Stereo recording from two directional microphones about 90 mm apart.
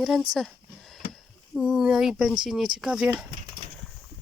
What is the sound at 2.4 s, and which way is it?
Speech, 5° right (ahead or behind).